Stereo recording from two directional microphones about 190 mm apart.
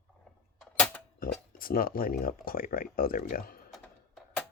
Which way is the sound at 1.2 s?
50° left (ahead or behind).